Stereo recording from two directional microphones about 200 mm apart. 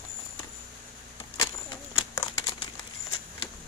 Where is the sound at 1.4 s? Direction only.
15° left (ahead or behind).